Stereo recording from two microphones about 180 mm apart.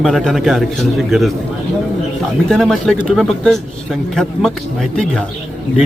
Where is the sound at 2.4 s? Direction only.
5° left (ahead or behind).